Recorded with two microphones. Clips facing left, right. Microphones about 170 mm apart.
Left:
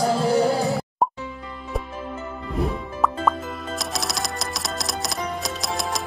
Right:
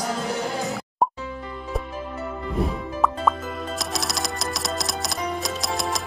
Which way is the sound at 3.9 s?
Centre (ahead or behind).